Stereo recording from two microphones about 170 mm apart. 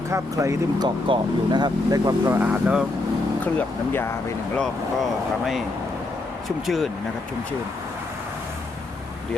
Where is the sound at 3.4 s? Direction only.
10° left (ahead or behind).